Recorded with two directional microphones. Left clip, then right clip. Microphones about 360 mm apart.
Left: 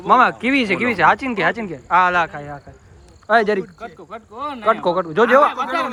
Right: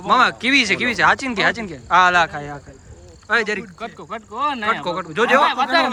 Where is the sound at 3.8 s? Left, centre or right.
Right.